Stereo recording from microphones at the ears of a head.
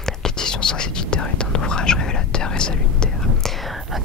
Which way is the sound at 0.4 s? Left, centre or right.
Left.